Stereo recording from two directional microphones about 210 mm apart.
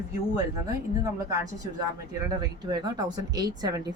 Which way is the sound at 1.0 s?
15° right (ahead or behind).